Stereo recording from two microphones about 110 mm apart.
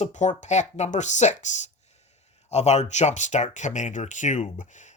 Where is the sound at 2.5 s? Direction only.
90° left.